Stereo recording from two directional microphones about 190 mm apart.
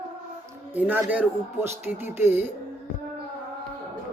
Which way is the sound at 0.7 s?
10° right (ahead or behind).